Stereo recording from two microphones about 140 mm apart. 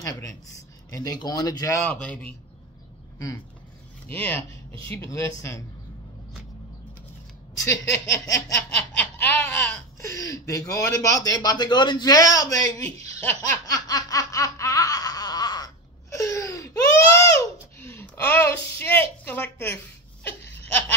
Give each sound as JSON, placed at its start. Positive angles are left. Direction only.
{"t": 0.0, "sound": "speech", "side_deg": 25}
{"t": 1.9, "sound": "laughter", "side_deg": 10}
{"t": 4.1, "sound": "laughter", "side_deg": 15}
{"t": 4.8, "sound": "speech", "side_deg": 20}
{"t": 7.6, "sound": "speech", "side_deg": 20}
{"t": 8.6, "sound": "laughter", "side_deg": 10}
{"t": 10.1, "sound": "speech", "side_deg": 25}
{"t": 13.4, "sound": "laughter", "side_deg": 25}